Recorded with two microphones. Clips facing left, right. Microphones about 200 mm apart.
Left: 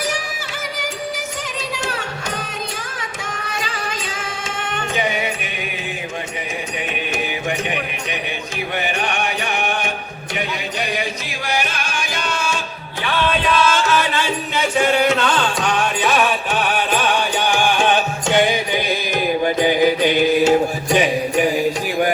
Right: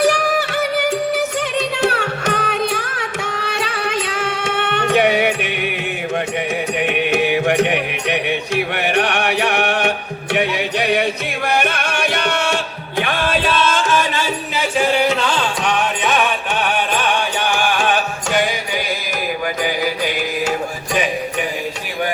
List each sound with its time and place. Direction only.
0.0 s music: 65° right (ahead or behind)
7.1 s music: 65° right (ahead or behind)
14.8 s music: centre (ahead or behind); by 18.4 s 25° left (ahead or behind)
19.5 s mantra: 25° left (ahead or behind)
20.4 s music: 30° left (ahead or behind)